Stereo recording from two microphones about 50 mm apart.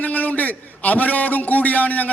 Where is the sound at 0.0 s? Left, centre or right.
Left.